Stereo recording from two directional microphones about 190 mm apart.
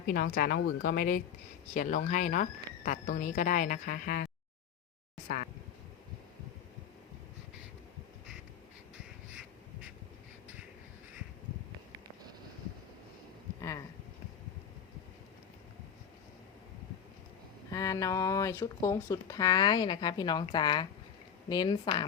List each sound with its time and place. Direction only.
0.1 s speech: 50° left (ahead or behind)
13.6 s a sound: 15° left (ahead or behind)
17.7 s speech: 15° left (ahead or behind)